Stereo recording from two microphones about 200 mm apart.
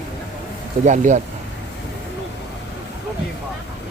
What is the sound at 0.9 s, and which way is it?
Speech, 35° right (ahead or behind).